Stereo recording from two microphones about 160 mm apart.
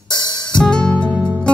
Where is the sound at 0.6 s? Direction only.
5° left (ahead or behind).